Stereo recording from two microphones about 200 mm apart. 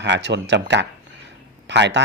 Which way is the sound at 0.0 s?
60° right (ahead or behind).